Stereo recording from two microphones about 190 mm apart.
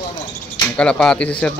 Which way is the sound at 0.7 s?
5° left (ahead or behind).